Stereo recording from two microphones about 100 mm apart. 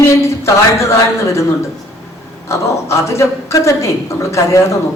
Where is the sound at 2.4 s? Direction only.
30° left (ahead or behind).